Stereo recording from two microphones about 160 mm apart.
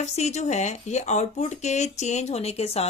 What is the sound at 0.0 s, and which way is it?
Speech, 45° left (ahead or behind).